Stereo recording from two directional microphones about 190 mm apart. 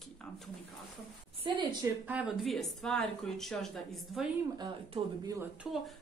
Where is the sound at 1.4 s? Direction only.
25° right (ahead or behind).